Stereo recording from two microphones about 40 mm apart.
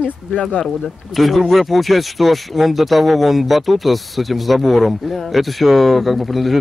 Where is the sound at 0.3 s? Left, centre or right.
Left.